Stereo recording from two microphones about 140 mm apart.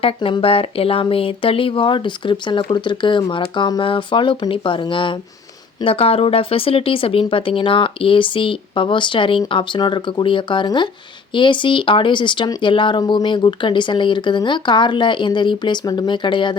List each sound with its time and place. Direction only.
0.0 s speech: 35° left (ahead or behind)